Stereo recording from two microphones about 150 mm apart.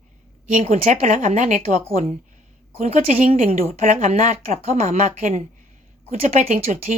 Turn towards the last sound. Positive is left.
turn(degrees=-55)  # may be behind; listen again after turning